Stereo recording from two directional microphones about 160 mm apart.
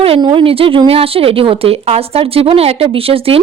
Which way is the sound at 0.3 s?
35° right (ahead or behind).